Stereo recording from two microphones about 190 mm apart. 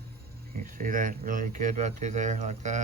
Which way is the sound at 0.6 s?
45° right (ahead or behind).